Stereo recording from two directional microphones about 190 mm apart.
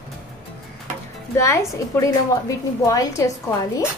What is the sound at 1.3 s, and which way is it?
A woman's voice, 15° left (ahead or behind).